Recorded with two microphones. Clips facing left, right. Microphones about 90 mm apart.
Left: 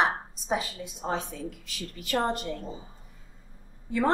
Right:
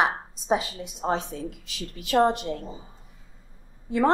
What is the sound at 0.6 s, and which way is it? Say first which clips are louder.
A woman's voice: right 3 dB; 25° right (ahead or behind).